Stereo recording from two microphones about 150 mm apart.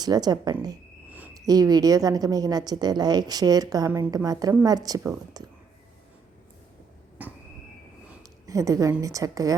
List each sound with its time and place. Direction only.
0.0 s a woman's voice: 25° right (ahead or behind)
7.2 s train: 10° right (ahead or behind)
8.2 s a woman's voice: 25° right (ahead or behind)